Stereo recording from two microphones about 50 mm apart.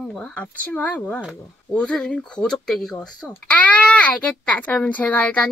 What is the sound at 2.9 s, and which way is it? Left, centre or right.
A child's voice, left.